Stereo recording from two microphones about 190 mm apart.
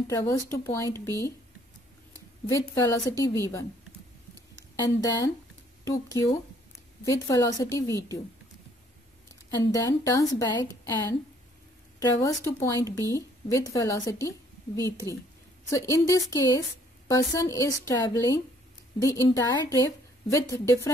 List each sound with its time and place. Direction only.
0.1 s a woman's voice: 15° left (ahead or behind)
2.4 s a woman's voice: 15° left (ahead or behind)
4.7 s a woman's voice: 20° left (ahead or behind)
9.5 s a woman's voice: 20° left (ahead or behind)